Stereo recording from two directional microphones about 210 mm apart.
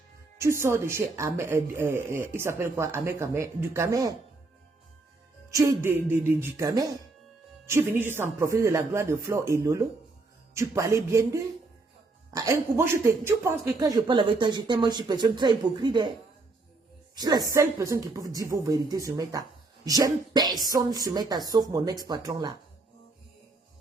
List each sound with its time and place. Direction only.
0.3 s speech: 15° right (ahead or behind)
5.5 s a man's voice: 15° right (ahead or behind)
17.2 s a man's voice: 20° right (ahead or behind)